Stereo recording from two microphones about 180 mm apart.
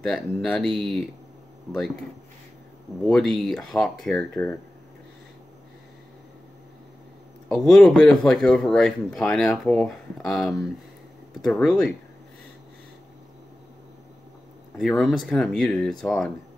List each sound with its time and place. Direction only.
0.0 s speech: centre (ahead or behind)
3.1 s speech: centre (ahead or behind)
7.4 s speech: centre (ahead or behind)
14.8 s speech: centre (ahead or behind)